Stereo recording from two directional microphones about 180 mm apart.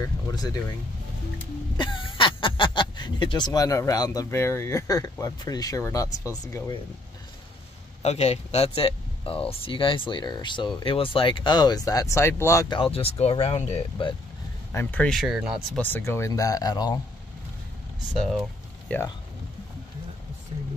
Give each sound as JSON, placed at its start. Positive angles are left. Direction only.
{"t": 0.0, "sound": "speech", "side_deg": 20}
{"t": 1.8, "sound": "speech", "side_deg": 25}
{"t": 8.0, "sound": "speech", "side_deg": 35}
{"t": 14.7, "sound": "speech", "side_deg": 10}
{"t": 15.8, "sound": "speech", "side_deg": 10}
{"t": 18.9, "sound": "speech", "side_deg": 10}